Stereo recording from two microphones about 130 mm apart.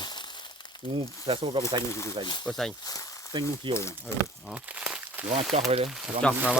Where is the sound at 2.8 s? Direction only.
30° left (ahead or behind).